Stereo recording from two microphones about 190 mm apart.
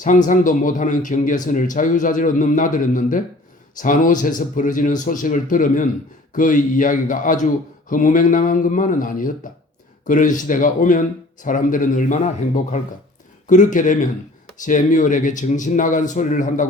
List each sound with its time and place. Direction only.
0.0 s a man's voice: 40° left (ahead or behind)